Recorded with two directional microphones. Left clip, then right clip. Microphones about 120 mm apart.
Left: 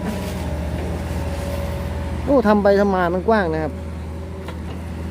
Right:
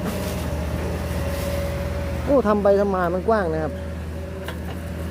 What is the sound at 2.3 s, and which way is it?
Speech, 25° left (ahead or behind).